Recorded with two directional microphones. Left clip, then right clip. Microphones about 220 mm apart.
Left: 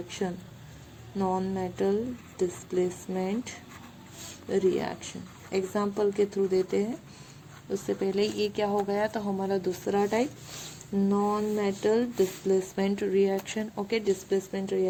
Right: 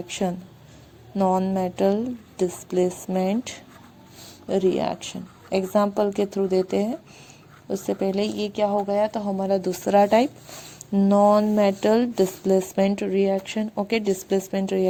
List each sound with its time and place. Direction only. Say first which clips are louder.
1.1 s a woman's voice: right 8 dB; 30° right (ahead or behind)